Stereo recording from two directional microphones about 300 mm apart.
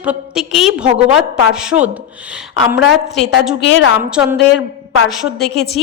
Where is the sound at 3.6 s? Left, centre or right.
Left.